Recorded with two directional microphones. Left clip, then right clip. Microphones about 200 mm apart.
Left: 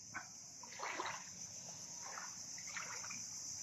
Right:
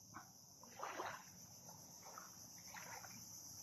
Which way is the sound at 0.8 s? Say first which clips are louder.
Left 4 dB; 40° left (ahead or behind).